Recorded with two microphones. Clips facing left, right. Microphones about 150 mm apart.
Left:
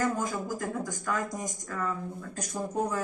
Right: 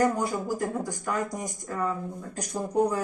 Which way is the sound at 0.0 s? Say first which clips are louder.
Right 4 dB; 15° right (ahead or behind).